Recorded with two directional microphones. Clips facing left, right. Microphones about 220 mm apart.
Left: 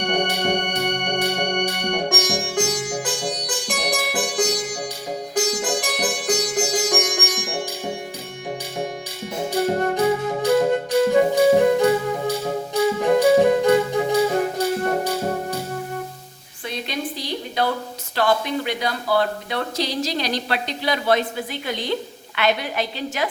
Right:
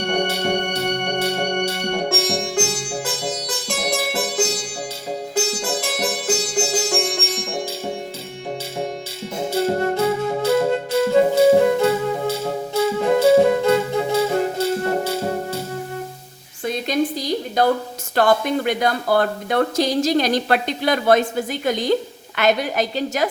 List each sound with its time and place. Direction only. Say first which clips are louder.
0.0 s organ: right 1 dB; 15° left (ahead or behind)
5.3 s music: left 1 dB; 15° left (ahead or behind)
9.5 s music: right 1 dB; 15° left (ahead or behind)
16.6 s a sound: right 7 dB; 45° right (ahead or behind)
18.1 s speech: right 4 dB; 50° right (ahead or behind)